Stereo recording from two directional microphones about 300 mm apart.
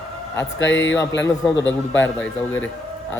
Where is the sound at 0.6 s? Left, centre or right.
Left.